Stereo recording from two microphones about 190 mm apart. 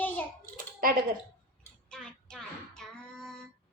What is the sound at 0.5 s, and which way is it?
Computer keyboard, 50° right (ahead or behind).